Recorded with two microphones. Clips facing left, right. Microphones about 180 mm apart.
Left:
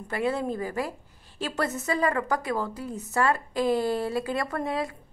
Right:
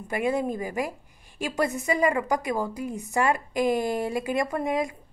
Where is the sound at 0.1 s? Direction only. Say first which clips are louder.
Right 2 dB; 15° right (ahead or behind).